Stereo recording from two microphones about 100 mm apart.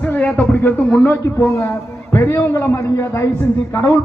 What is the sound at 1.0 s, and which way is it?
A man's voice, 25° left (ahead or behind).